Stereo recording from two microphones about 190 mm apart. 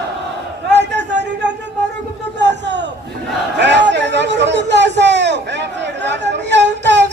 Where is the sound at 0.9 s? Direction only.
65° right (ahead or behind).